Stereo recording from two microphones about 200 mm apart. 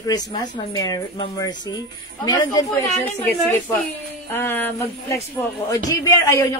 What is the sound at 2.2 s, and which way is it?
A woman's voice, 20° left (ahead or behind).